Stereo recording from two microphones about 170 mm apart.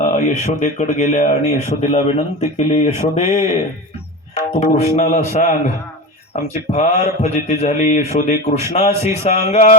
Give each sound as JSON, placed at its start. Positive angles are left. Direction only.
{"t": 0.0, "sound": "speech", "side_deg": 50}
{"t": 4.6, "sound": "speech", "side_deg": 40}